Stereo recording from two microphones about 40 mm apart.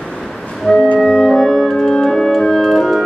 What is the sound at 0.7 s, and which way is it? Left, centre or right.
Music, centre.